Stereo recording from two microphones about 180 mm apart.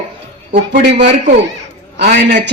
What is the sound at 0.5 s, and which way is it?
Speech, 70° right (ahead or behind).